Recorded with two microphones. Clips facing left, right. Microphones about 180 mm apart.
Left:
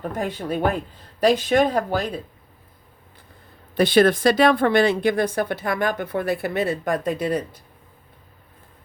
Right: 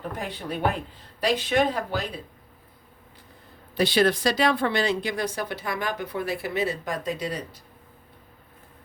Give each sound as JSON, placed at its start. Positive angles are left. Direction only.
{"t": 0.1, "sound": "speech", "side_deg": 45}
{"t": 3.8, "sound": "speech", "side_deg": 50}